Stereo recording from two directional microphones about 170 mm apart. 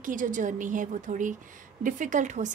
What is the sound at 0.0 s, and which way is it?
A woman's voice, 50° right (ahead or behind).